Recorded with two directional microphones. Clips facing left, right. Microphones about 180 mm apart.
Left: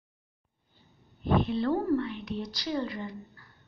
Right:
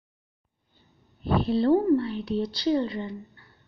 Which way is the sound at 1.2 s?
35° right (ahead or behind).